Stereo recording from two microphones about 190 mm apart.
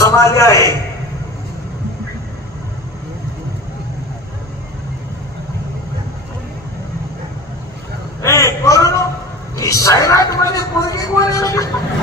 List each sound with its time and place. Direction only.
0.0 s a man's voice: 15° left (ahead or behind)
8.2 s a sound: 15° left (ahead or behind)
9.6 s a man's voice: 15° left (ahead or behind)